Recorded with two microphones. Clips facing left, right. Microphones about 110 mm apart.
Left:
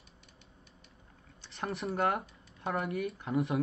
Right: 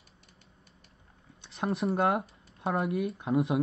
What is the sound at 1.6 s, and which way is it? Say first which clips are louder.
Speech: right 4 dB; 25° right (ahead or behind).